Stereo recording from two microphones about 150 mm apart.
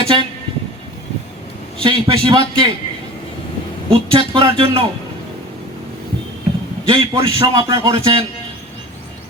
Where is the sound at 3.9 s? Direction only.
35° right (ahead or behind).